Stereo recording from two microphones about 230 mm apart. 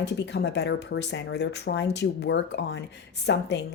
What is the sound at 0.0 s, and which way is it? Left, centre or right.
Speech, left.